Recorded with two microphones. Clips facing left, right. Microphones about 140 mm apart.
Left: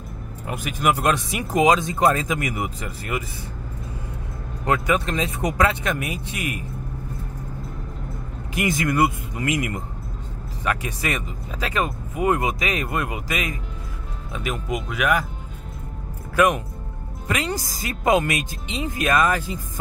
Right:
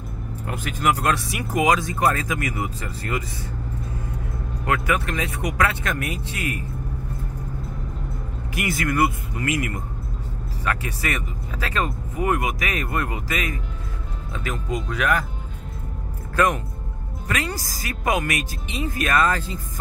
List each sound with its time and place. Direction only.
0.5 s speech: 15° left (ahead or behind)
4.6 s speech: 20° left (ahead or behind)
8.5 s speech: 20° left (ahead or behind)
16.3 s speech: 15° left (ahead or behind)